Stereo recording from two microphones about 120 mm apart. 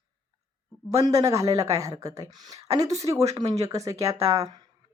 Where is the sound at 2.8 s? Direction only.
65° right (ahead or behind).